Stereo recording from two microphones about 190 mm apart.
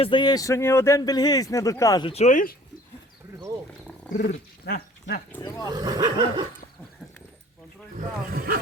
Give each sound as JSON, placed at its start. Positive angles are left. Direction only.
{"t": 0.0, "sound": "speech", "side_deg": 25}
{"t": 4.1, "sound": "speech", "side_deg": 5}
{"t": 4.6, "sound": "a sound", "side_deg": 55}
{"t": 5.6, "sound": "speech", "side_deg": -20}
{"t": 7.9, "sound": "speech", "side_deg": -50}